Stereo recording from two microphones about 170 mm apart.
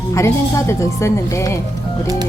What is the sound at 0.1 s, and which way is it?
Speech, 15° left (ahead or behind).